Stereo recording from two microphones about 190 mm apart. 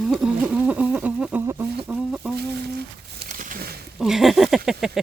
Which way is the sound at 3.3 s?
45° right (ahead or behind).